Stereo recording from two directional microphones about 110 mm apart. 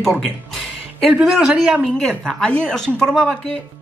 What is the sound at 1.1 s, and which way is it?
Speech, 5° right (ahead or behind).